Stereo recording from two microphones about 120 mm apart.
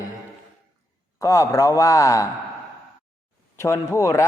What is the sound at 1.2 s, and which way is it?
A man's voice, 30° left (ahead or behind).